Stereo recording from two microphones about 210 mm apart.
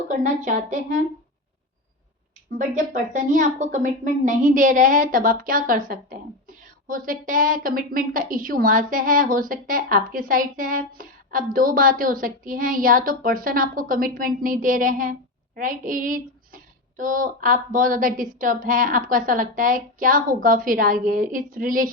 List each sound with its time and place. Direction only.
0.1 s a woman's voice: 35° right (ahead or behind)
2.6 s a woman's voice: 35° right (ahead or behind)
6.8 s a woman's voice: 40° right (ahead or behind)